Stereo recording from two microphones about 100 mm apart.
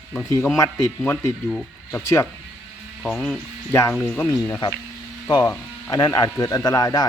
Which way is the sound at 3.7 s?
25° left (ahead or behind).